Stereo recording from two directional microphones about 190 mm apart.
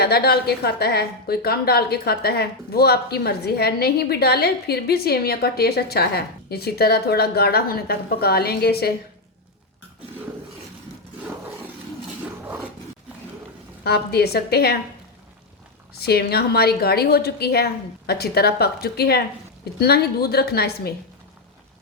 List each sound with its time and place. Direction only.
0.0 s a woman's voice: 55° left (ahead or behind)
13.8 s a woman's voice: 55° left (ahead or behind)
16.0 s a woman's voice: 55° left (ahead or behind)